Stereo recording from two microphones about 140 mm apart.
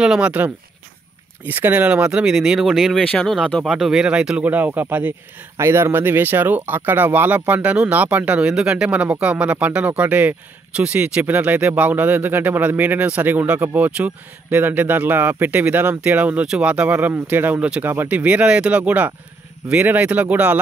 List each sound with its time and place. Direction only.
0.0 s speech: 5° right (ahead or behind)